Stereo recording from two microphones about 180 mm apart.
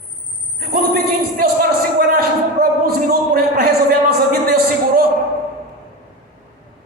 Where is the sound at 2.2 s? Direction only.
55° right (ahead or behind).